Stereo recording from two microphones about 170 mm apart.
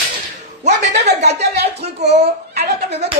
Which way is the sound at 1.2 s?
75° right (ahead or behind).